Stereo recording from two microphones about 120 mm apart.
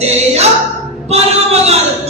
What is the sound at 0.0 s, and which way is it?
Music, 65° right (ahead or behind).